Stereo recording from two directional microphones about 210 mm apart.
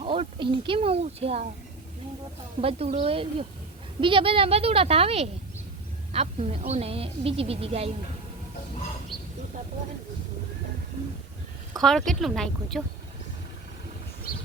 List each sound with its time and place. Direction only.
0.0 s speech: 25° right (ahead or behind)
2.6 s speech: 30° right (ahead or behind)
11.8 s speech: centre (ahead or behind)
14.3 s a sound: 45° left (ahead or behind)